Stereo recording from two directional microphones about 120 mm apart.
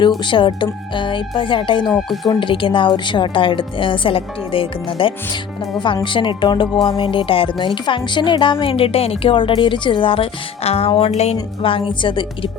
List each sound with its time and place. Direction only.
0.3 s speech: 40° left (ahead or behind); by 11.3 s 65° left (ahead or behind)
11.6 s speech: 45° left (ahead or behind)